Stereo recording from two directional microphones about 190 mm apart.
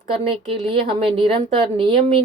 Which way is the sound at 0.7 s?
30° right (ahead or behind).